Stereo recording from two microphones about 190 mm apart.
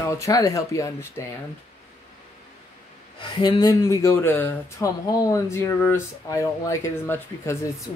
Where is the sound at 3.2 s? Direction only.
25° left (ahead or behind).